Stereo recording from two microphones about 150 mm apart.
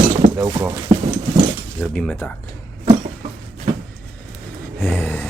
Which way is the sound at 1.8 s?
5° left (ahead or behind).